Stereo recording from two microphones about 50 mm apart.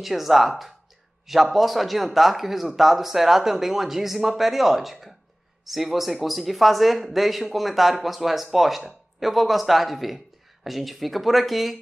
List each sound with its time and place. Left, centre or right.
0.0 s speech: centre